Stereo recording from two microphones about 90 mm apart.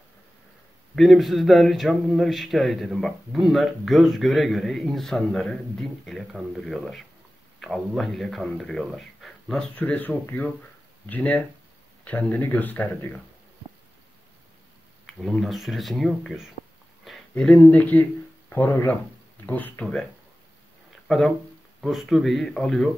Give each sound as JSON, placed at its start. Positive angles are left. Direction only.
{"t": 0.9, "sound": "speech", "side_deg": 0}
{"t": 9.8, "sound": "speech", "side_deg": 20}
{"t": 15.0, "sound": "speech", "side_deg": 0}
{"t": 17.4, "sound": "speech", "side_deg": 15}
{"t": 19.4, "sound": "speech", "side_deg": 20}
{"t": 21.1, "sound": "speech", "side_deg": 5}